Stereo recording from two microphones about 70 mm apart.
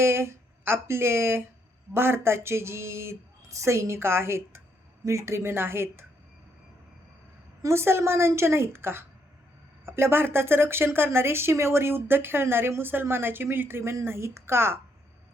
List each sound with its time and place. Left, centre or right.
0.0 s speech: right
7.6 s speech: right